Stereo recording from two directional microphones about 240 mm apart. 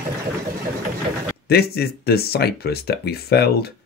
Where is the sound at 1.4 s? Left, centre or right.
Left.